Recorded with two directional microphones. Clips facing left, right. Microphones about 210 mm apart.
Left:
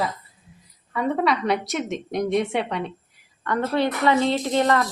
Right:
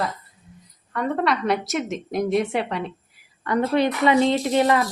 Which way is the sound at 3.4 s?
10° right (ahead or behind).